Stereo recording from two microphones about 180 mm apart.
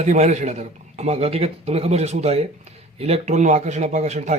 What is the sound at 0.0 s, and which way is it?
Speech, 40° right (ahead or behind).